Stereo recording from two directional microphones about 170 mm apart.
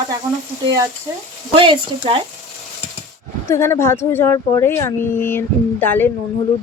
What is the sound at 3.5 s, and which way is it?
Speech, 15° left (ahead or behind).